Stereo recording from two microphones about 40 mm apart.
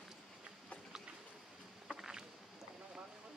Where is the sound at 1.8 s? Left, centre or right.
Centre.